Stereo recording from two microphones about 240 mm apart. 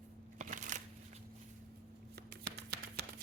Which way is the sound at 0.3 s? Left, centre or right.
Right.